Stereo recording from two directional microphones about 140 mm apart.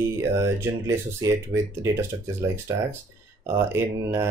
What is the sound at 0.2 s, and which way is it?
Speech, 20° right (ahead or behind).